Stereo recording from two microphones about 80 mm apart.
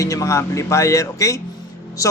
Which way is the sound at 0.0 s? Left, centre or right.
Left.